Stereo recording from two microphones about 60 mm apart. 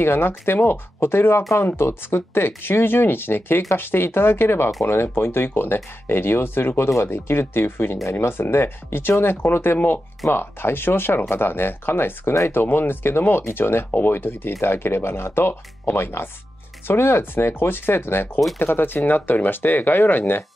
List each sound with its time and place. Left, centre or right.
0.0 s speech: left